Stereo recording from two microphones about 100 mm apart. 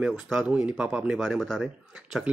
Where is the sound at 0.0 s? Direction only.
5° right (ahead or behind).